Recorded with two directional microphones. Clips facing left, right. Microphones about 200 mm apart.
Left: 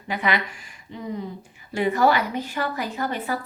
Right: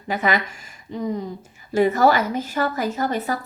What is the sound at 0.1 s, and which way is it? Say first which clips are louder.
A woman's voice: right 3 dB; 45° right (ahead or behind).